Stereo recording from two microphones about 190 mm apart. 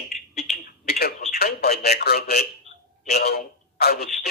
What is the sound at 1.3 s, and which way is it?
Speech, 55° left (ahead or behind).